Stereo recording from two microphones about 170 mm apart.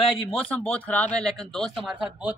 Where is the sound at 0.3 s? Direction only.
5° left (ahead or behind).